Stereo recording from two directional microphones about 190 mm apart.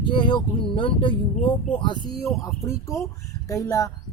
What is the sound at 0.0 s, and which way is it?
Speech, 25° left (ahead or behind).